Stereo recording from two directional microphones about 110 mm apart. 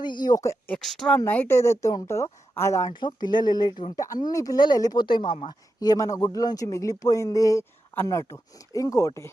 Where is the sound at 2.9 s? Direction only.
40° left (ahead or behind).